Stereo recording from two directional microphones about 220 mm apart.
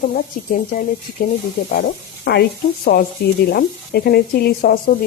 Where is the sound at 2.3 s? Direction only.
50° left (ahead or behind).